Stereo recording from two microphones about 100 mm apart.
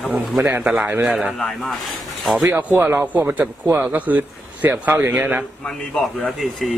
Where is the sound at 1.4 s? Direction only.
Centre (ahead or behind).